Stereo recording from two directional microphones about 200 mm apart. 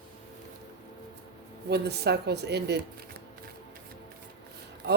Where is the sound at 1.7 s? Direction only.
55° right (ahead or behind).